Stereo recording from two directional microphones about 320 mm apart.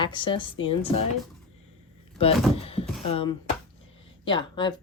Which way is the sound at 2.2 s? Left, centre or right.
Centre.